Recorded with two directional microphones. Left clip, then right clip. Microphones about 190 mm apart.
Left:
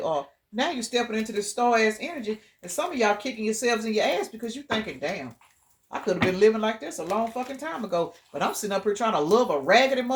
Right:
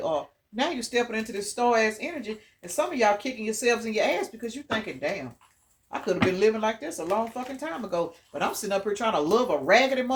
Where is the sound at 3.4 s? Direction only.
30° left (ahead or behind).